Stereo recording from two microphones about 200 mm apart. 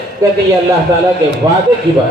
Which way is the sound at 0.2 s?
15° right (ahead or behind).